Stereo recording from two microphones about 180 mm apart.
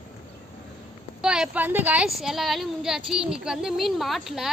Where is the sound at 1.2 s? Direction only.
5° right (ahead or behind).